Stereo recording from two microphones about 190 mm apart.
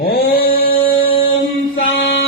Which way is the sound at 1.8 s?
70° left (ahead or behind).